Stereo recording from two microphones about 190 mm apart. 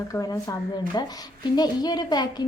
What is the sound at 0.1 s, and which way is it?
A woman's voice, 20° left (ahead or behind).